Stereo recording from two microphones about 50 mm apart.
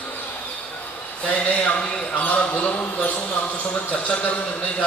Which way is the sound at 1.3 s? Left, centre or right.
Left.